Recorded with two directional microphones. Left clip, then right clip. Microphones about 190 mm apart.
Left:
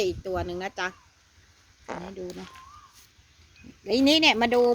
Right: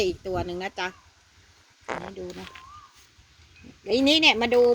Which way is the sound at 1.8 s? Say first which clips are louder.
Right 4 dB; 25° right (ahead or behind).